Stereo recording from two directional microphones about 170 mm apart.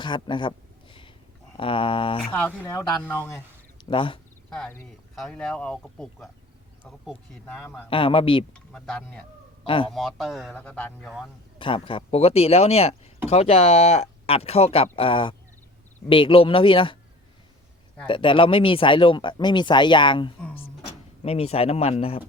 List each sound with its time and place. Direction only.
0.0 s a sound: 30° left (ahead or behind)
1.5 s speech: 30° left (ahead or behind)
2.6 s speech: 15° left (ahead or behind)
3.8 s speech: 30° left (ahead or behind)
4.4 s speech: centre (ahead or behind)
7.4 s speech: 10° left (ahead or behind)
7.9 s speech: 30° left (ahead or behind)
8.5 s speech: 5° left (ahead or behind)
9.6 s speech: 30° left (ahead or behind)
9.9 s speech: centre (ahead or behind)
11.6 s speech: 30° left (ahead or behind)
18.0 s speech: 30° left (ahead or behind)